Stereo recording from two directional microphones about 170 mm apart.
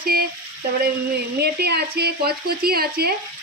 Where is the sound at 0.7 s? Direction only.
70° right (ahead or behind).